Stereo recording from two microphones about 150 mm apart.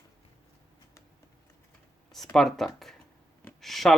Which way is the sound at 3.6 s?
Centre (ahead or behind).